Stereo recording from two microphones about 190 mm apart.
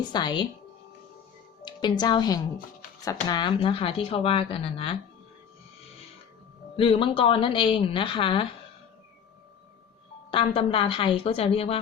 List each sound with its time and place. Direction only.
0.1 s speech: 25° left (ahead or behind)
1.6 s a woman's voice: 25° left (ahead or behind)
6.7 s speech: 30° left (ahead or behind)
10.3 s speech: 30° left (ahead or behind)